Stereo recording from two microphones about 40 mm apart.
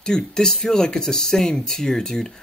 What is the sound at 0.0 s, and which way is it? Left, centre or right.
Speech, centre.